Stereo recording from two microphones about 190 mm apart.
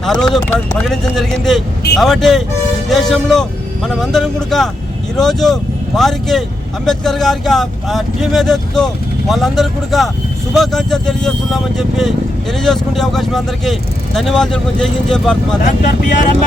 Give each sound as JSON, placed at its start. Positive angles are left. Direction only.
{"t": 0.0, "sound": "speech", "side_deg": 0}
{"t": 15.6, "sound": "speech", "side_deg": 40}